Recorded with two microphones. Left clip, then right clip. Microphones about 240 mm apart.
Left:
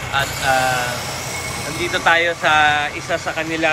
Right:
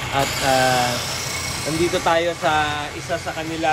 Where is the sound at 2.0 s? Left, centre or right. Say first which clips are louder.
Left 7 dB; centre.